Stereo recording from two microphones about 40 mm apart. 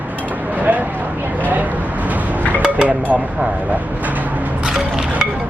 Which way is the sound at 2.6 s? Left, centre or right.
Right.